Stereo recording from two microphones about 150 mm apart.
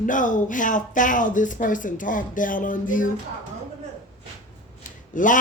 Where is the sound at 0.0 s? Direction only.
60° left (ahead or behind).